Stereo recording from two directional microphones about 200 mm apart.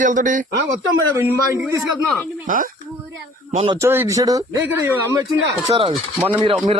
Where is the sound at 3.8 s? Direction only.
15° right (ahead or behind).